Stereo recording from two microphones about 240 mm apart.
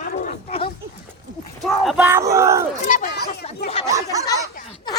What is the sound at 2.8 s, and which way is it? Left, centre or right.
Chatter, left.